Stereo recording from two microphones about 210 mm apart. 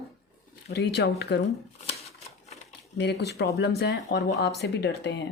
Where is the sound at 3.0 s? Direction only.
55° left (ahead or behind).